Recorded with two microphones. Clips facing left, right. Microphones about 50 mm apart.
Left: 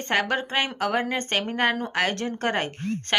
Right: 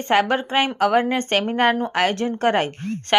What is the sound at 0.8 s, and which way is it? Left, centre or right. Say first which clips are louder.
Speech: right 9 dB; right.